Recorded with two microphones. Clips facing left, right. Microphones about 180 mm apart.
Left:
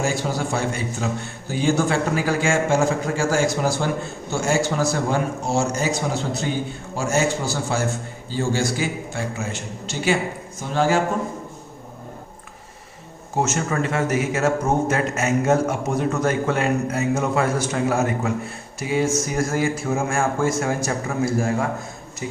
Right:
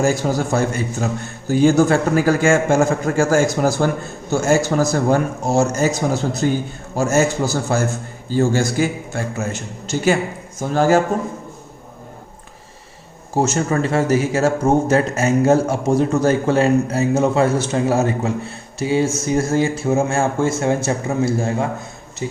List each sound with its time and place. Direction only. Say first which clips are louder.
0.0 s a man's voice: right 5 dB; 45° right (ahead or behind)
13.3 s a man's voice: right 4 dB; 35° right (ahead or behind)